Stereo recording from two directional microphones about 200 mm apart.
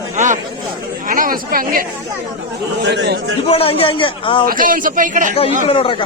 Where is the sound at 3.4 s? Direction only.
30° left (ahead or behind).